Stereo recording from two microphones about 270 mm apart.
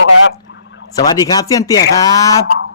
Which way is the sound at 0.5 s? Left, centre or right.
Left.